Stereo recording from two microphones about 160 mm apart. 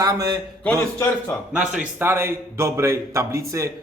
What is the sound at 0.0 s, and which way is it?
Speech, 25° right (ahead or behind).